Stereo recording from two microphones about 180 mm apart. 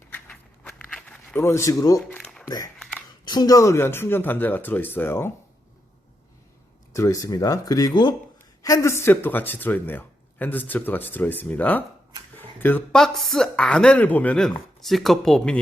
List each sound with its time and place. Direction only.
0.1 s a sound: 5° left (ahead or behind)
3.2 s speech: 20° left (ahead or behind)
6.9 s speech: 15° left (ahead or behind)